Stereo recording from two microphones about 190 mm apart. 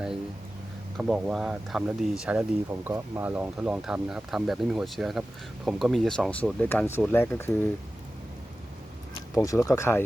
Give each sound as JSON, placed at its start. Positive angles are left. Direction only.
{"t": 0.9, "sound": "speech", "side_deg": -5}
{"t": 9.3, "sound": "speech", "side_deg": 15}